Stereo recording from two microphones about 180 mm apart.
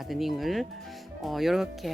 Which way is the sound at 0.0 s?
Centre (ahead or behind).